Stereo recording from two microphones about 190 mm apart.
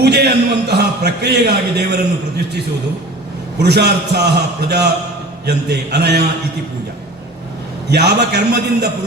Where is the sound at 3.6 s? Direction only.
60° right (ahead or behind).